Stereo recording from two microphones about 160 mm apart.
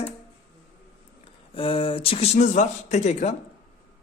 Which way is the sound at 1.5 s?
35° left (ahead or behind).